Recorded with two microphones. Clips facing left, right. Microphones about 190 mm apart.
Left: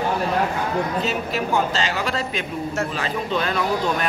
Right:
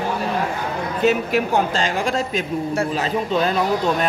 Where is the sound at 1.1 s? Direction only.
50° right (ahead or behind).